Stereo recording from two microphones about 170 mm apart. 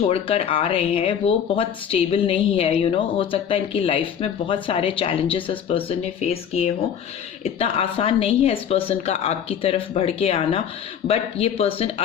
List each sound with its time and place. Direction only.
0.1 s speech: 35° left (ahead or behind)